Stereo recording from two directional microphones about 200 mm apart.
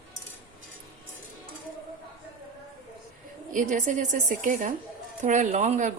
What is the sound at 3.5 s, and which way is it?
Speech, 40° right (ahead or behind).